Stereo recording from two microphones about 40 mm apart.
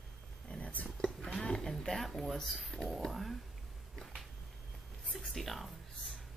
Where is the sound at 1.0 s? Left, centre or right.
Centre.